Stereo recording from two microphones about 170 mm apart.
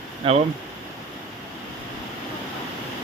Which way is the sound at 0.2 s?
30° right (ahead or behind).